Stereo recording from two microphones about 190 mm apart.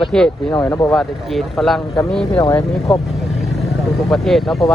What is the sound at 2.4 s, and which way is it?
Speech, 20° left (ahead or behind).